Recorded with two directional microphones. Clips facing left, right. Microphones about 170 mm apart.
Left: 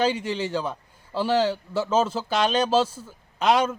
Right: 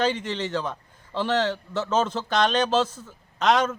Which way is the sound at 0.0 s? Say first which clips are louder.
Left 1 dB; 10° left (ahead or behind).